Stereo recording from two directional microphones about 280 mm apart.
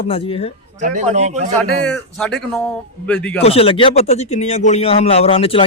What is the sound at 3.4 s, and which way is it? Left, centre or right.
A man's voice, left.